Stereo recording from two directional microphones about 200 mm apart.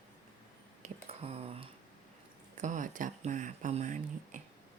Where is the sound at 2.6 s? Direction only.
40° right (ahead or behind).